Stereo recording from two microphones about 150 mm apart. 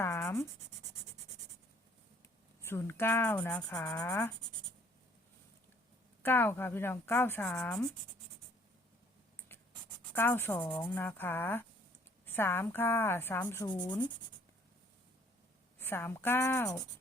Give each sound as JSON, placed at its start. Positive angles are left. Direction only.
{"t": 0.0, "sound": "writing", "side_deg": 15}
{"t": 2.6, "sound": "speech", "side_deg": 15}
{"t": 6.2, "sound": "speech", "side_deg": 15}
{"t": 9.5, "sound": "scratch", "side_deg": 15}
{"t": 10.1, "sound": "speech", "side_deg": 15}
{"t": 13.7, "sound": "speech", "side_deg": 30}
{"t": 15.8, "sound": "speech", "side_deg": 15}